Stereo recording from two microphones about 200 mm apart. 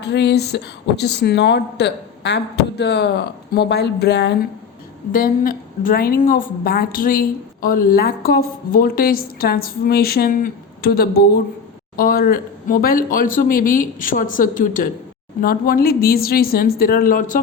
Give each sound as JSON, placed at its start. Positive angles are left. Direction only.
{"t": 0.0, "sound": "a woman's voice", "side_deg": 60}
{"t": 5.1, "sound": "a woman's voice", "side_deg": 45}